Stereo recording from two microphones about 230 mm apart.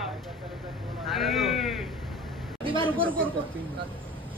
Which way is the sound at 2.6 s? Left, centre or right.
Right.